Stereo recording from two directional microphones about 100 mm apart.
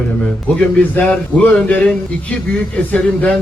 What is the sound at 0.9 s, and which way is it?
A man's voice, 15° left (ahead or behind).